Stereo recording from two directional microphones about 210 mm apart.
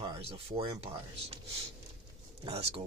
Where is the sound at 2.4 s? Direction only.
25° right (ahead or behind).